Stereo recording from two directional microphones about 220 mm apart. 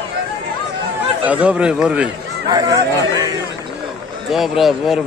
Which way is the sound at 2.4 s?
15° right (ahead or behind).